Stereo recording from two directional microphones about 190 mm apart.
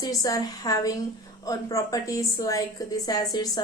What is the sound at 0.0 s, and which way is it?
A woman's voice, 20° left (ahead or behind).